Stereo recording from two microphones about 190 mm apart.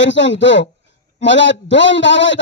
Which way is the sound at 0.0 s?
75° left (ahead or behind).